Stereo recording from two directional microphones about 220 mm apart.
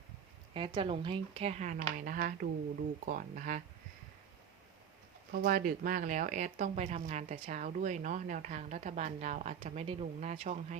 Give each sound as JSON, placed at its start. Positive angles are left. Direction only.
{"t": 0.5, "sound": "a woman's voice", "side_deg": -25}
{"t": 5.3, "sound": "speech", "side_deg": -45}